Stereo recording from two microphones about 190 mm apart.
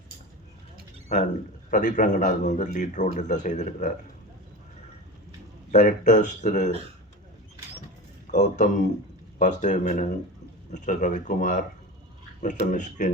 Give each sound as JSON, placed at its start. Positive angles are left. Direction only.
{"t": 1.0, "sound": "speech", "side_deg": 40}
{"t": 5.7, "sound": "speech", "side_deg": 40}
{"t": 8.3, "sound": "speech", "side_deg": 40}